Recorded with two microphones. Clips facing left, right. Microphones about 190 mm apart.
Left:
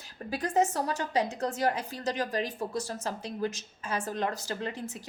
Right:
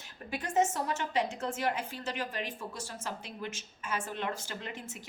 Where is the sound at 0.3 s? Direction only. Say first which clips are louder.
Left 2 dB; 35° left (ahead or behind).